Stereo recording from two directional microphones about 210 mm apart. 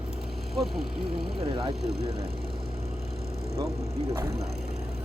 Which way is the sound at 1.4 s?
25° right (ahead or behind).